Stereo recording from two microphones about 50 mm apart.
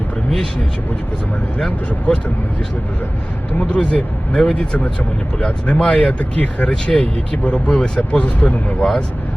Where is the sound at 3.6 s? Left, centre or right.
Left.